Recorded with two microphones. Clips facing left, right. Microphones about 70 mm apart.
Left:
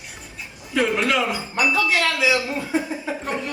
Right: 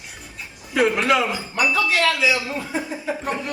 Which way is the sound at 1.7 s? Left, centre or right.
Left.